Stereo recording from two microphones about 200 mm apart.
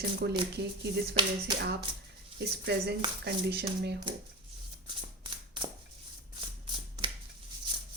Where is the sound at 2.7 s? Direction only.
55° right (ahead or behind).